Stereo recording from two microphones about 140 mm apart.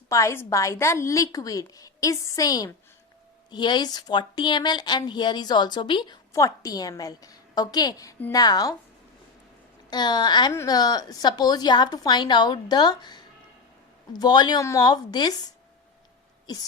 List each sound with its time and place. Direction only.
0.1 s a woman's voice: 20° left (ahead or behind)
6.3 s a woman's voice: 25° left (ahead or behind)
9.9 s a woman's voice: 30° left (ahead or behind)